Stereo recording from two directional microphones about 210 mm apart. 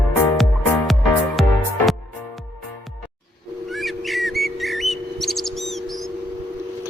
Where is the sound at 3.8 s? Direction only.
Centre (ahead or behind).